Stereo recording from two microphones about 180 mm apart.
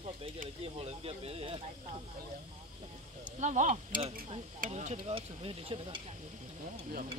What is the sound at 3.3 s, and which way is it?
Speech, 40° right (ahead or behind).